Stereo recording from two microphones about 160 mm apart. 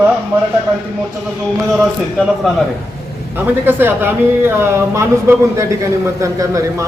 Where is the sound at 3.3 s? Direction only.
15° right (ahead or behind).